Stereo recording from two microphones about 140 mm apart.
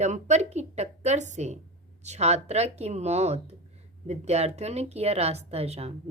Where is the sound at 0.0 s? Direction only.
55° right (ahead or behind).